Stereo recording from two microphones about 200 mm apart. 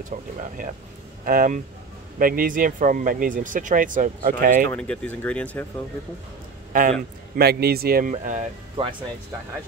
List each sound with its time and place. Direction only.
0.1 s speech: 40° right (ahead or behind)
4.7 s speech: 5° left (ahead or behind)
6.7 s speech: 40° right (ahead or behind)
8.8 s speech: 25° right (ahead or behind)